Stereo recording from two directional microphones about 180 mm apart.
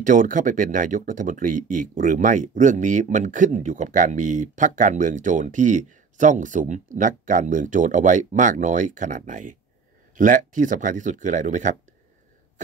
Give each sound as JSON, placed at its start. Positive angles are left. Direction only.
{"t": 0.0, "sound": "speech", "side_deg": -45}